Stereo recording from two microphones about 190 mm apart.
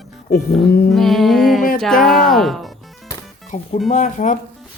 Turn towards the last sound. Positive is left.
turn(degrees=40)  # may be behind; listen again after turning